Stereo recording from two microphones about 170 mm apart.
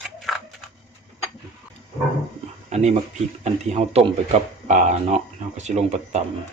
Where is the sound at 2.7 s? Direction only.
40° right (ahead or behind).